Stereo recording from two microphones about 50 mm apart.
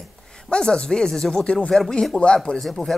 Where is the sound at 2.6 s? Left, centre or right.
Centre.